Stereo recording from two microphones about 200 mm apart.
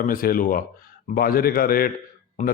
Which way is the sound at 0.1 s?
45° left (ahead or behind).